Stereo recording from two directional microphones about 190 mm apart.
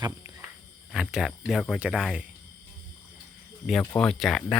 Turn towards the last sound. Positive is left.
turn(degrees=0)  # may be behind; listen again after turning